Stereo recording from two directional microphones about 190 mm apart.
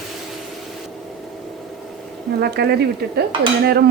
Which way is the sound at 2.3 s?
55° right (ahead or behind).